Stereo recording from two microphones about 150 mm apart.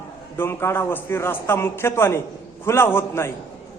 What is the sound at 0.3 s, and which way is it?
A man's voice, 15° left (ahead or behind).